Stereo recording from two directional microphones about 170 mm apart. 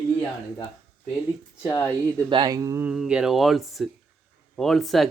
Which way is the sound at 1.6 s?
15° left (ahead or behind).